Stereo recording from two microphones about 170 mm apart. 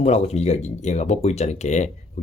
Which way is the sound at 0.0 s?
40° left (ahead or behind).